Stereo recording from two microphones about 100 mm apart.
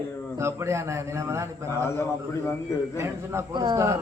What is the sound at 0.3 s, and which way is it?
A man's voice, 30° right (ahead or behind).